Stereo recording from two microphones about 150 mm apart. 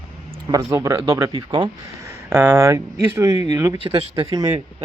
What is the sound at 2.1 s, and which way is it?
Speech, 15° right (ahead or behind).